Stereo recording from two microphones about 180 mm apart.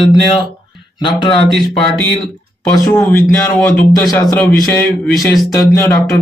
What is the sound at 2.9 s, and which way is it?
Speech, 15° left (ahead or behind).